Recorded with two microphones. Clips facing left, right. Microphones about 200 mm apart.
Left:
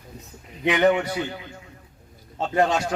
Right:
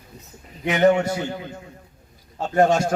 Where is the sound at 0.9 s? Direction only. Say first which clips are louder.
Right 3 dB; 45° right (ahead or behind).